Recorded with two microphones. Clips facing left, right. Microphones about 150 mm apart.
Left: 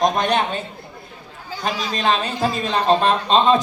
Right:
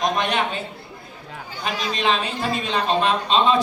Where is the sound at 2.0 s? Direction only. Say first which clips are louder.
Left 3 dB; 40° left (ahead or behind).